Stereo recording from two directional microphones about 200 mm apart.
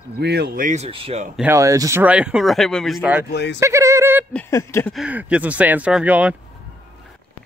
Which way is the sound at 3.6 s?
15° right (ahead or behind).